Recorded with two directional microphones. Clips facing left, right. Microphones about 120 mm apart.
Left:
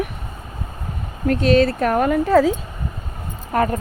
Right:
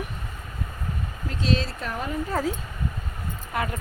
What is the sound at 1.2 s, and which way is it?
A woman's voice, 60° left (ahead or behind).